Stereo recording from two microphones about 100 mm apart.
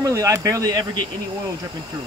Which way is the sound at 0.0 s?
35° right (ahead or behind).